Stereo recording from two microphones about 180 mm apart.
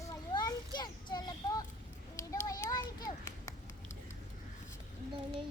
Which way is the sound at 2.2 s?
15° left (ahead or behind).